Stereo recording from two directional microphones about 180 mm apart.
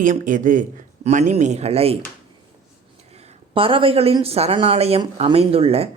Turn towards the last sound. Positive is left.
turn(degrees=-35)  # may be behind; listen again after turning